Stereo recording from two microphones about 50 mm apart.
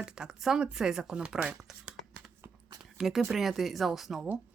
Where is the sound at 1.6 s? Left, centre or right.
Centre.